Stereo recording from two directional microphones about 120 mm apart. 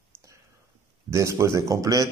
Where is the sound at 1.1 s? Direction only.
25° right (ahead or behind).